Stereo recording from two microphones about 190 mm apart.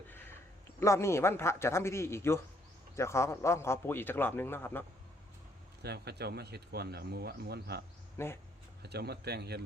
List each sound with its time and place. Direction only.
0.1 s a sound: 10° left (ahead or behind)
0.8 s a man's voice: 15° left (ahead or behind)
5.8 s speech: 60° right (ahead or behind)
8.2 s a man's voice: 15° left (ahead or behind)
8.8 s speech: 60° right (ahead or behind)